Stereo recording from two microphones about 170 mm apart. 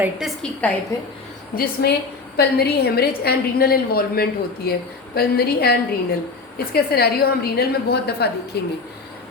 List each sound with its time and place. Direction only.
0.0 s a woman's voice: 5° right (ahead or behind)
0.6 s a woman's voice: 10° left (ahead or behind)
1.5 s a woman's voice: 70° left (ahead or behind)